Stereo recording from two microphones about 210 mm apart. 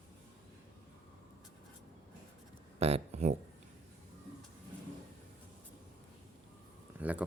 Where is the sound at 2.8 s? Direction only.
30° right (ahead or behind).